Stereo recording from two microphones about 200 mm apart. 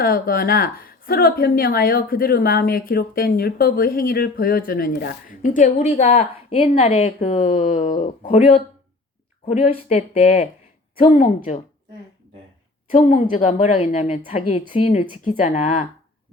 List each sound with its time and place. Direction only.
0.0 s a woman's voice: 45° left (ahead or behind)
12.9 s a woman's voice: 40° left (ahead or behind)